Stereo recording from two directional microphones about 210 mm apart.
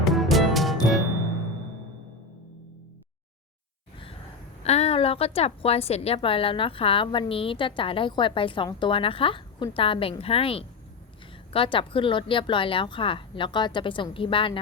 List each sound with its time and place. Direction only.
0.0 s music: centre (ahead or behind)
4.6 s a woman's voice: 30° left (ahead or behind)